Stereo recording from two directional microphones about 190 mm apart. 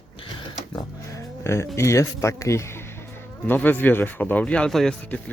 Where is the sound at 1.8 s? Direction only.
15° left (ahead or behind).